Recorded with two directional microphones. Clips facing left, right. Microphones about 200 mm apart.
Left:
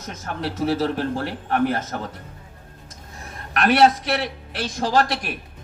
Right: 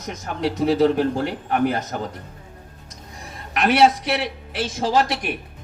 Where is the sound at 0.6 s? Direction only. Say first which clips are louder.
Right 5 dB; 15° right (ahead or behind).